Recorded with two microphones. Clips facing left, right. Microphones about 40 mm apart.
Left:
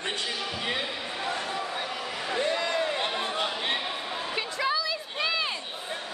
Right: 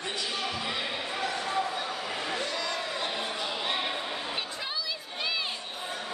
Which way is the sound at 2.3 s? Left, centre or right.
Left.